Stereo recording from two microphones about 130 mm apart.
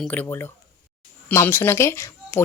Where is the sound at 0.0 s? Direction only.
10° left (ahead or behind).